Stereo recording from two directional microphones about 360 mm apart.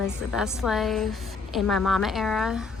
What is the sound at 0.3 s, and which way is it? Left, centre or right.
Speech, centre.